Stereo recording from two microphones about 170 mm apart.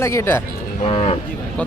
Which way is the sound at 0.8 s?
35° left (ahead or behind).